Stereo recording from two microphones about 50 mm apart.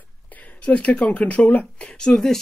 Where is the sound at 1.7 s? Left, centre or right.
Centre.